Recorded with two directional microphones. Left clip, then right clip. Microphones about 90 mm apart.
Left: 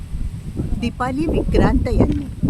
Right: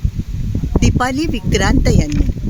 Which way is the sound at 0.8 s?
30° right (ahead or behind).